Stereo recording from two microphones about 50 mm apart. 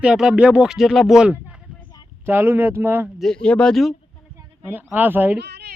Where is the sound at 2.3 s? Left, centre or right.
Right.